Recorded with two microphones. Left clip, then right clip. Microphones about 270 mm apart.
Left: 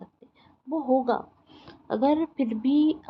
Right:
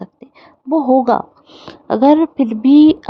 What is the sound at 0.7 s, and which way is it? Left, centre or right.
A woman's voice, right.